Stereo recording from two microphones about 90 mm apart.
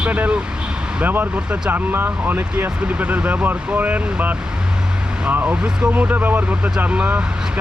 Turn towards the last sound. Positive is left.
turn(degrees=-15)  # may be behind; listen again after turning